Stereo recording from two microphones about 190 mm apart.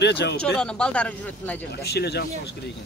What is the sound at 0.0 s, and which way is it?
Speech, 65° left (ahead or behind).